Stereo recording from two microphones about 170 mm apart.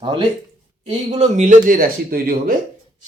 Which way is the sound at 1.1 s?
45° right (ahead or behind).